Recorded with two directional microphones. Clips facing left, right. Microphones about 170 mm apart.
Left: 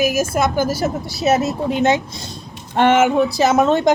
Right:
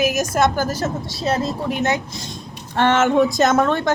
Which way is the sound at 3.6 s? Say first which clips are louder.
Left 4 dB; 20° left (ahead or behind).